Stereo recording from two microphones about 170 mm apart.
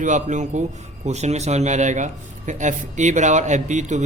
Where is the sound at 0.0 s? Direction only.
45° right (ahead or behind).